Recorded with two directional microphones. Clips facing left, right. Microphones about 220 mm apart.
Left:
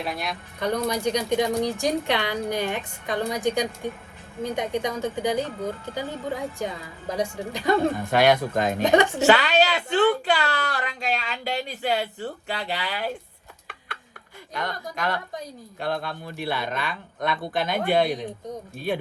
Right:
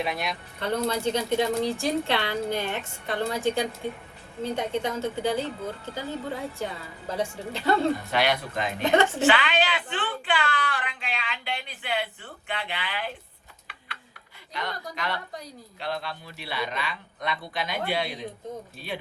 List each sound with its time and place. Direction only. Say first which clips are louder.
0.0 s speech: right 1 dB; centre (ahead or behind)
0.6 s a woman's voice: left 2 dB; 15° left (ahead or behind)
7.2 s a woman's voice: left 2 dB; 15° left (ahead or behind)
7.9 s a man's voice: left 6 dB; 50° left (ahead or behind)
8.8 s a woman's voice: left 2 dB; 15° left (ahead or behind)
9.1 s a woman's voice: left 4 dB; 40° left (ahead or behind)
13.7 s a sound: left 5 dB; 50° left (ahead or behind)
14.5 s a man's voice: left 3 dB; 50° left (ahead or behind)